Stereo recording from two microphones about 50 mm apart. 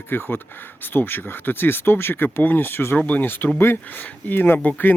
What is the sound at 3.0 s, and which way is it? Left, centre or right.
Speech, left.